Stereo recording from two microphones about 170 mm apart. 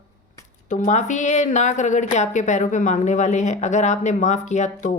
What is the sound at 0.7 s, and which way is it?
A woman's voice, 45° left (ahead or behind).